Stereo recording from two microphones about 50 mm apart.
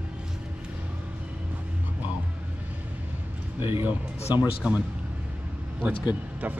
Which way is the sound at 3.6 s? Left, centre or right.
Right.